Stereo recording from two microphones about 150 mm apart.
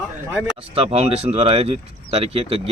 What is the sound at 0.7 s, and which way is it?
Speech, 40° right (ahead or behind).